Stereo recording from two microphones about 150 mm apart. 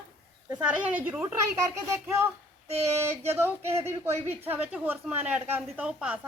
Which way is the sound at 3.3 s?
15° right (ahead or behind).